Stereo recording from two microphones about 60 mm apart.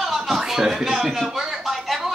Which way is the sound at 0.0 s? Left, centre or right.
Centre.